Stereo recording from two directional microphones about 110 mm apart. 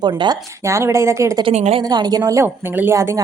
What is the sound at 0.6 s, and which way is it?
Speech, 25° right (ahead or behind).